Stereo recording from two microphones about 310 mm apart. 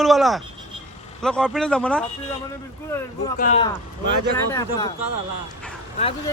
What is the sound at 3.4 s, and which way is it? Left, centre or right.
A man's voice, left.